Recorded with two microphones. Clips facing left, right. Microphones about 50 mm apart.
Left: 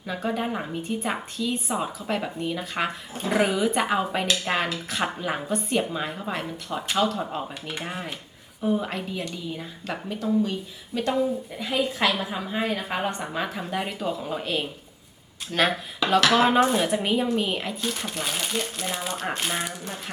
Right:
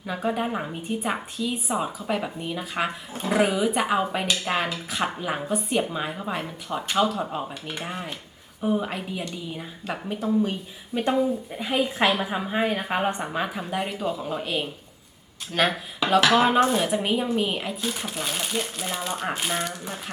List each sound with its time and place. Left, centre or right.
0.1 s a woman's voice: centre